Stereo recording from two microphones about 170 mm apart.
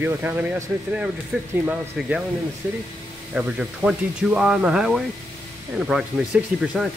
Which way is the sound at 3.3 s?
5° right (ahead or behind).